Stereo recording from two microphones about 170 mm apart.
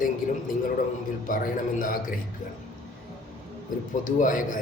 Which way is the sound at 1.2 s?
55° left (ahead or behind).